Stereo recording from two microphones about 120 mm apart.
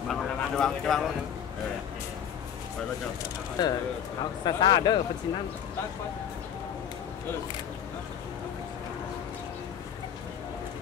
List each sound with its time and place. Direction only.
0.1 s speech: 5° left (ahead or behind)
3.6 s speech: 35° left (ahead or behind)